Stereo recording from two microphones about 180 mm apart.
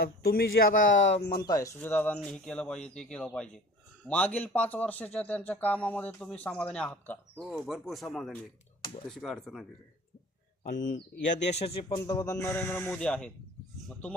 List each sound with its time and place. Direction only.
0.0 s speech: 60° left (ahead or behind)
1.3 s speech: 20° left (ahead or behind); by 9.6 s centre (ahead or behind)
10.6 s speech: 50° left (ahead or behind)
11.6 s speech: 30° left (ahead or behind); by 14.2 s 5° left (ahead or behind)